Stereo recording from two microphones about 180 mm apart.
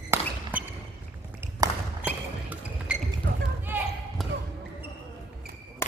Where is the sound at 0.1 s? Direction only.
10° right (ahead or behind).